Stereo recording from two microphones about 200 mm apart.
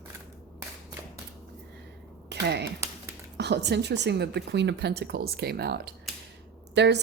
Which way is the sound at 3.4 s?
55° right (ahead or behind).